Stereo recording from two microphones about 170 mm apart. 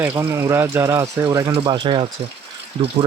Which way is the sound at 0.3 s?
15° right (ahead or behind).